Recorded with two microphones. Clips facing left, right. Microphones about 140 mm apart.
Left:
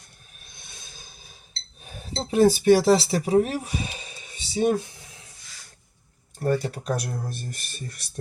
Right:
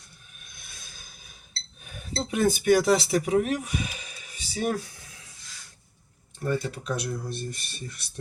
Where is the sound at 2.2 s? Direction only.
30° left (ahead or behind).